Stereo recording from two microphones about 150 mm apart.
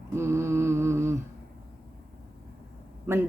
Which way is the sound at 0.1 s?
15° right (ahead or behind).